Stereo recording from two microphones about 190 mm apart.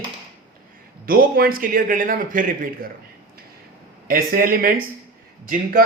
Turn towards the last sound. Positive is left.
turn(degrees=-50)  # may be behind; listen again after turning